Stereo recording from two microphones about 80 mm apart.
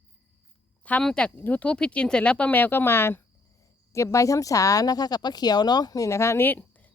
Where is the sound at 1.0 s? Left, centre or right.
Centre.